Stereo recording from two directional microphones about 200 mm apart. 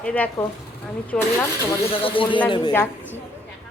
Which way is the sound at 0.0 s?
5° left (ahead or behind).